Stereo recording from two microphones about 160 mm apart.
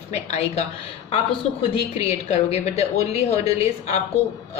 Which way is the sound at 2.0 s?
40° left (ahead or behind).